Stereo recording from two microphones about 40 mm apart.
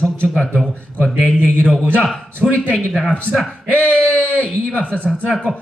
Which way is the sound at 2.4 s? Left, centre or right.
Right.